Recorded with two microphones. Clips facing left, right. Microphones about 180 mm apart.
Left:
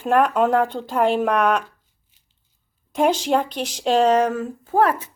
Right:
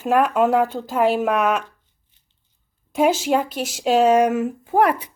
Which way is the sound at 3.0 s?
5° right (ahead or behind).